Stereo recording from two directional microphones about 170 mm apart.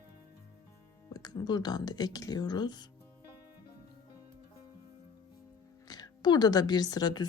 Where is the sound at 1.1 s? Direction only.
25° left (ahead or behind).